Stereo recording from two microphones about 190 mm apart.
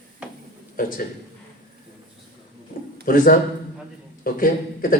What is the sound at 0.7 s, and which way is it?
Speech, 45° left (ahead or behind).